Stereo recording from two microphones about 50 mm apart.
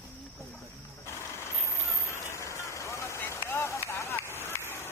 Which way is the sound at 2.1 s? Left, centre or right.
Left.